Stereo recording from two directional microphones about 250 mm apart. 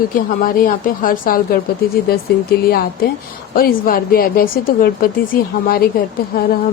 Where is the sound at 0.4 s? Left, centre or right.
Left.